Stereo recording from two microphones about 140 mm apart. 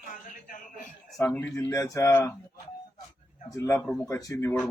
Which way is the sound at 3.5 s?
20° left (ahead or behind).